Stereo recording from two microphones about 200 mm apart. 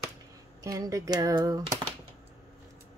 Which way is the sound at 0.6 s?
20° right (ahead or behind).